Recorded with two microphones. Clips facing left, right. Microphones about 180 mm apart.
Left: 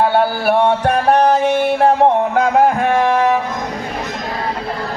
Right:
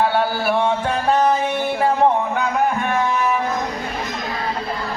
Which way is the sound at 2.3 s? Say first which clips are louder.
Left 7 dB; 90° left.